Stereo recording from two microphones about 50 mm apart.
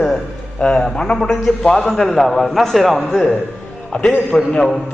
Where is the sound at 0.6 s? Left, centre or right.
Left.